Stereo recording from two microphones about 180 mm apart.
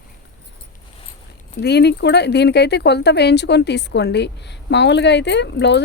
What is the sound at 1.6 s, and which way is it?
Speech, 65° left (ahead or behind).